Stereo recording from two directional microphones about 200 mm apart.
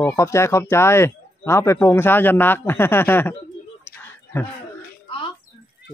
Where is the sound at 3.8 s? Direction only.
10° left (ahead or behind).